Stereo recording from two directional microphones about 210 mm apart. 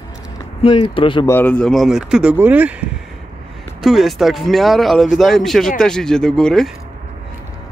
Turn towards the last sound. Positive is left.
turn(degrees=0)  # may be behind; listen again after turning